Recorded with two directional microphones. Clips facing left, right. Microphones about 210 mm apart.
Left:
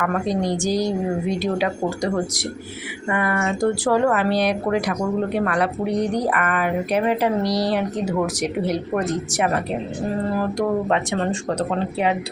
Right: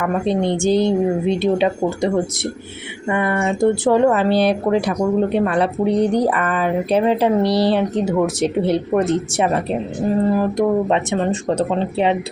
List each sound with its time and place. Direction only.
0.0 s speech: 25° right (ahead or behind)